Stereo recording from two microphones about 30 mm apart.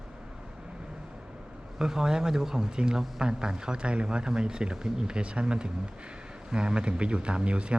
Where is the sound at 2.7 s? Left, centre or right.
Right.